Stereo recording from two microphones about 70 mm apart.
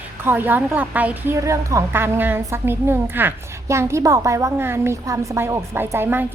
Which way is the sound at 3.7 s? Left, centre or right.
Right.